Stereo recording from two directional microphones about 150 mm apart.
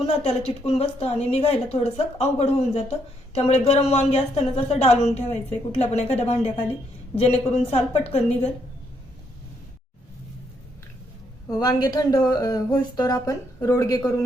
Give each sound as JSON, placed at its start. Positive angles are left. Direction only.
{"t": 0.4, "sound": "a woman's voice", "side_deg": 40}
{"t": 11.5, "sound": "speech", "side_deg": 25}